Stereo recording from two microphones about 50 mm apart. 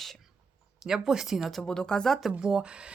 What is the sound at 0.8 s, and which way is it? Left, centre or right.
Speech, centre.